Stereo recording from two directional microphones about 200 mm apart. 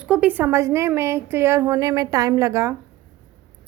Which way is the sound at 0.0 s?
5° right (ahead or behind).